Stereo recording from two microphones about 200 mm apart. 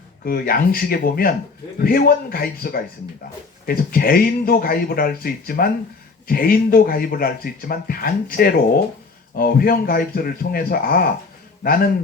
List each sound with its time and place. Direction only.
0.3 s speech: 45° left (ahead or behind)